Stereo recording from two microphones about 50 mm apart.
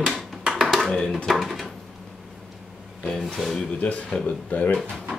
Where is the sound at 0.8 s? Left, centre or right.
Centre.